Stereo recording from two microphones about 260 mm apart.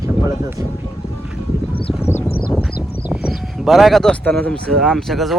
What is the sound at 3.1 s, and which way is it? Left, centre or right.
Speech, centre.